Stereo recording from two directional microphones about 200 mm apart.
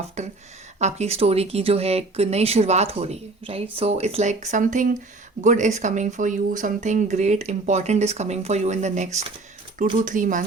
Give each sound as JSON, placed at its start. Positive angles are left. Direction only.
{"t": 0.2, "sound": "speech", "side_deg": -35}